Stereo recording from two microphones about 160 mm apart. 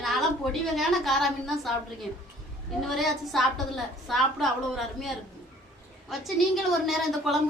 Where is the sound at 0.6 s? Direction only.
Centre (ahead or behind).